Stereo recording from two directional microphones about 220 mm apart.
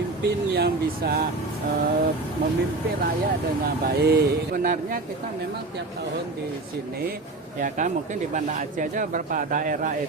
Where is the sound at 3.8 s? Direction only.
45° right (ahead or behind).